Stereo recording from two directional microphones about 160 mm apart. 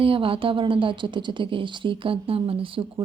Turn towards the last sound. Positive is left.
turn(degrees=-35)  # may be behind; listen again after turning